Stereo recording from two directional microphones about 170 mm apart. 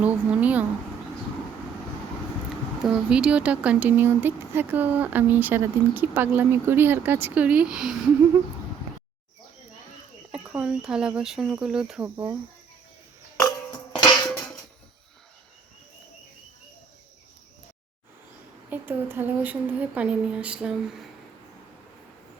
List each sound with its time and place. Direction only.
0.0 s speech: 10° right (ahead or behind)
2.8 s speech: 5° right (ahead or behind)
10.3 s cricket: 5° right (ahead or behind)
12.0 s speech: 15° right (ahead or behind)
13.3 s music: 20° left (ahead or behind)
14.3 s a sound: 5° left (ahead or behind)
18.7 s speech: 15° right (ahead or behind)